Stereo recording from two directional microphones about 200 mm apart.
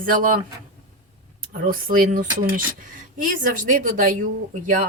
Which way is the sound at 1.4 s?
45° right (ahead or behind).